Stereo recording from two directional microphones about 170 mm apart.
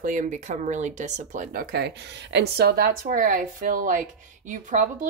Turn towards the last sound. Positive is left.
turn(degrees=-50)  # may be behind; listen again after turning